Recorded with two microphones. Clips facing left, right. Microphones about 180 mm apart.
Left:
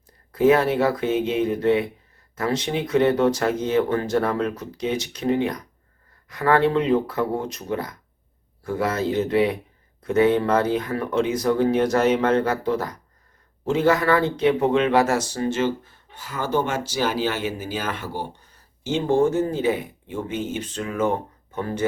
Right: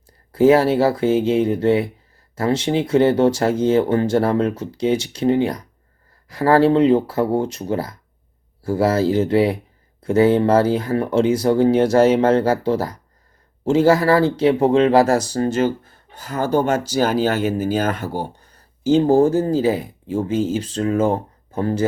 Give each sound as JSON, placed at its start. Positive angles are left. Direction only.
{"t": 0.3, "sound": "speech", "side_deg": -30}